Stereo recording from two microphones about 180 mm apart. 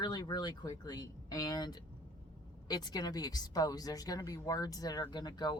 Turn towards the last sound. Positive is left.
turn(degrees=20)  # may be behind; listen again after turning